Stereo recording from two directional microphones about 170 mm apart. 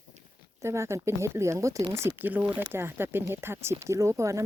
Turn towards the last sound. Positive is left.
turn(degrees=-15)  # may be behind; listen again after turning